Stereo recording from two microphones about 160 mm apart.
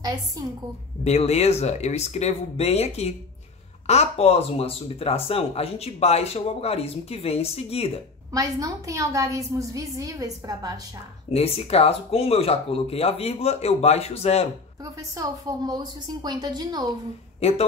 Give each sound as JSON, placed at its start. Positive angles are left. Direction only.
{"t": 0.0, "sound": "a woman's voice", "side_deg": -25}
{"t": 1.0, "sound": "speech", "side_deg": 40}
{"t": 8.3, "sound": "a woman's voice", "side_deg": -20}
{"t": 11.3, "sound": "speech", "side_deg": 40}
{"t": 15.1, "sound": "a woman's voice", "side_deg": -25}
{"t": 17.4, "sound": "speech", "side_deg": 40}